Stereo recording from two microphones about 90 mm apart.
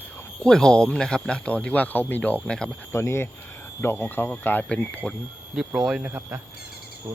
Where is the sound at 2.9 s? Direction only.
30° left (ahead or behind).